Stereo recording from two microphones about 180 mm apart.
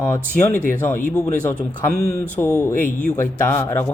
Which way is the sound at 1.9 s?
55° right (ahead or behind).